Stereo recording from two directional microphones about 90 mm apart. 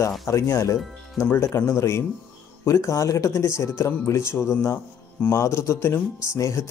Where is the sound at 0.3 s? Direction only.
35° left (ahead or behind).